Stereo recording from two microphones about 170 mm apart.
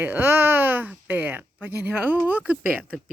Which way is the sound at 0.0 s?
10° right (ahead or behind).